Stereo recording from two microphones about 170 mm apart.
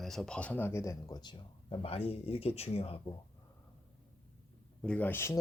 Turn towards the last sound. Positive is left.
turn(degrees=15)  # may be behind; listen again after turning